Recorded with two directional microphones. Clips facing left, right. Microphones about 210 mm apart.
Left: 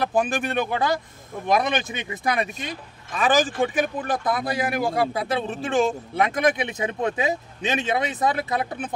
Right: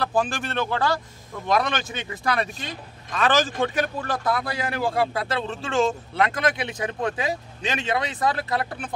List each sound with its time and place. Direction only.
0.0 s speech: 20° left (ahead or behind)